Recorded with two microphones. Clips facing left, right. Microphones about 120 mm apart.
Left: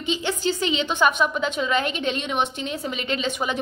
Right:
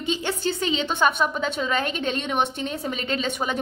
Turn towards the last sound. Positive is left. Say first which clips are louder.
# even
turn(degrees=-45)  # may be behind; listen again after turning